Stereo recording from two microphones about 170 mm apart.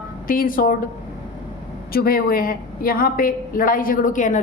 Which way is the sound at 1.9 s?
60° left (ahead or behind).